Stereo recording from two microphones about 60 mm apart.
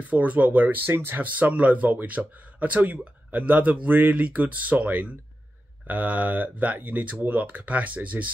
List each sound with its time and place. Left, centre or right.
0.0 s speech: right